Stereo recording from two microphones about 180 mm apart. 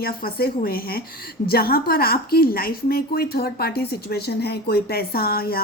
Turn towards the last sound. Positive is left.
turn(degrees=55)  # may be behind; listen again after turning